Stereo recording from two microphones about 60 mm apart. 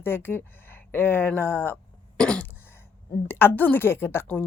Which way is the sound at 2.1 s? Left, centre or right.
Centre.